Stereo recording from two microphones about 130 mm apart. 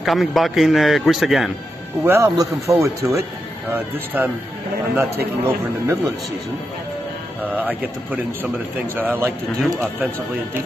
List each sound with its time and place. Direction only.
0.0 s a man's voice: centre (ahead or behind)
2.0 s a man's voice: 20° right (ahead or behind)
7.4 s a man's voice: 15° right (ahead or behind)